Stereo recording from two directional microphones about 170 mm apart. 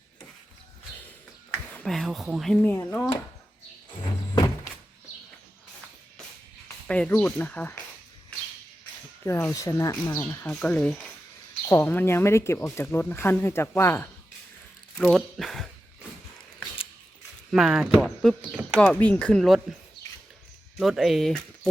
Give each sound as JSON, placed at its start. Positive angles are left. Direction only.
{"t": 1.7, "sound": "speech", "side_deg": 5}
{"t": 6.8, "sound": "speech", "side_deg": 5}
{"t": 9.2, "sound": "speech", "side_deg": 15}
{"t": 10.4, "sound": "speech", "side_deg": 5}
{"t": 14.9, "sound": "speech", "side_deg": 0}
{"t": 17.5, "sound": "speech", "side_deg": 0}
{"t": 20.7, "sound": "speech", "side_deg": 0}